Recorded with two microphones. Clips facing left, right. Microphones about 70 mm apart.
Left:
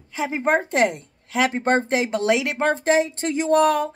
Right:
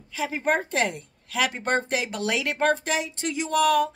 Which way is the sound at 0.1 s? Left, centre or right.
Left.